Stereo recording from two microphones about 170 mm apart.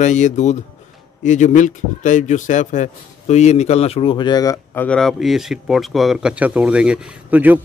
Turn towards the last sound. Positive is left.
turn(degrees=-10)  # may be behind; listen again after turning